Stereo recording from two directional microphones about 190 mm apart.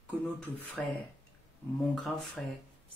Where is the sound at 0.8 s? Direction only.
5° left (ahead or behind).